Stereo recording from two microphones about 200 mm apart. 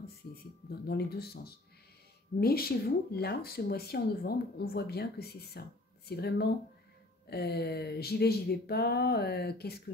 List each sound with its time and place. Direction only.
0.7 s speech: 50° left (ahead or behind)